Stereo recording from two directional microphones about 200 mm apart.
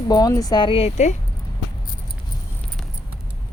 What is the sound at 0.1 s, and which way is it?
Speech, 20° left (ahead or behind).